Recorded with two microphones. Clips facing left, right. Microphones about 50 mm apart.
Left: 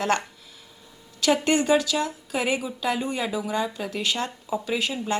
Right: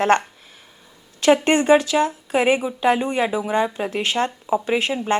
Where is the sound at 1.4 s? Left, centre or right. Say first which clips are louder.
Right 5 dB; right.